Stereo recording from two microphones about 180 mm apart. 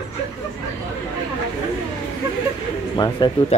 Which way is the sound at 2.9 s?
25° left (ahead or behind).